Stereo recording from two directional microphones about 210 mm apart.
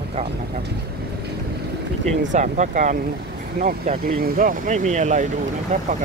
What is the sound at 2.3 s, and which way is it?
Speech, 35° right (ahead or behind).